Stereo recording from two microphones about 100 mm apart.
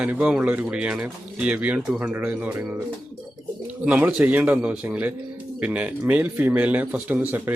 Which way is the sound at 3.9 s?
15° right (ahead or behind).